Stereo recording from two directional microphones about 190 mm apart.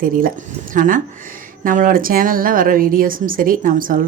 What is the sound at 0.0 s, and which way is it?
A woman's voice, 50° right (ahead or behind).